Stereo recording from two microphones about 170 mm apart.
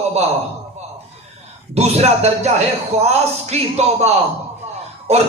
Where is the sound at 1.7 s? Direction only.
40° right (ahead or behind).